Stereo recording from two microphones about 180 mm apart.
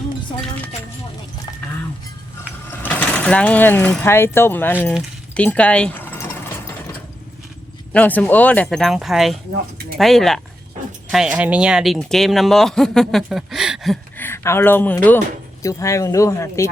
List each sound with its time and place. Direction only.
2.8 s speech: 10° left (ahead or behind)
5.3 s sewing machine: 5° left (ahead or behind)
7.9 s speech: 10° left (ahead or behind)
14.2 s speech: 15° left (ahead or behind)